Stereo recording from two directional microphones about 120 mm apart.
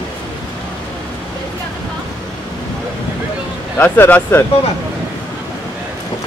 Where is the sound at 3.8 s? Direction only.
15° left (ahead or behind).